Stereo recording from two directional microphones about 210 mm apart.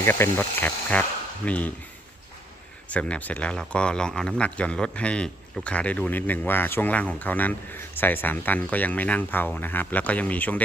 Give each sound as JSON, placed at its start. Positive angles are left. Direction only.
{"t": 0.0, "sound": "speech", "side_deg": 10}
{"t": 2.9, "sound": "speech", "side_deg": 5}